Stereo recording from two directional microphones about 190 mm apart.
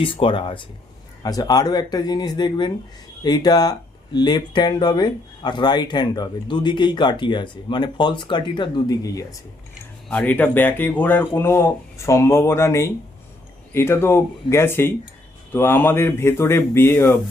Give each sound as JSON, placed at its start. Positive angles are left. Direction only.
{"t": 0.0, "sound": "speech", "side_deg": 25}
{"t": 10.1, "sound": "speech", "side_deg": 10}